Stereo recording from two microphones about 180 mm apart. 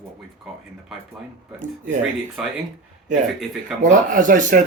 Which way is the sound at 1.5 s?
45° right (ahead or behind).